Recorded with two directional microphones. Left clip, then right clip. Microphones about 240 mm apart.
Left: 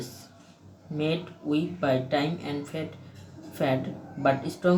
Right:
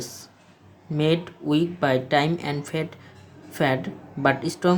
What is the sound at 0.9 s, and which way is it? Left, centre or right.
Speech, right.